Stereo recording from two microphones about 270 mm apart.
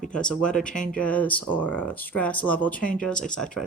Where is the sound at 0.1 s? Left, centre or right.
Centre.